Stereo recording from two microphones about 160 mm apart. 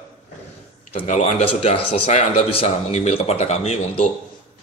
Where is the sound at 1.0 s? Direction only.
45° left (ahead or behind).